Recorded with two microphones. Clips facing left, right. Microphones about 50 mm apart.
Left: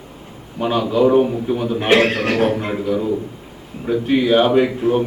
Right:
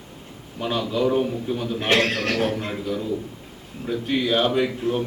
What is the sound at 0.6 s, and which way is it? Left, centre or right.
A man's voice, centre.